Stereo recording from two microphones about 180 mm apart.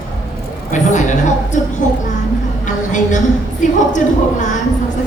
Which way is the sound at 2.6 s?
45° left (ahead or behind).